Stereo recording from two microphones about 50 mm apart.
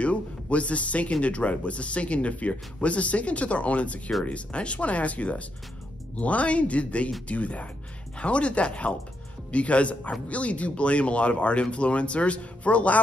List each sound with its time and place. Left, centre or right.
0.0 s a man's voice: left